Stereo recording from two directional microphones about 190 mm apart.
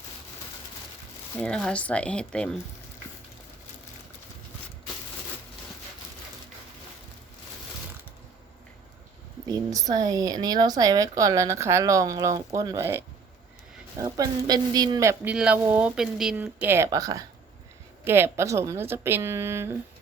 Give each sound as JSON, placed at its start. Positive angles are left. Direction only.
{"t": 1.4, "sound": "speech", "side_deg": 5}
{"t": 9.5, "sound": "speech", "side_deg": -20}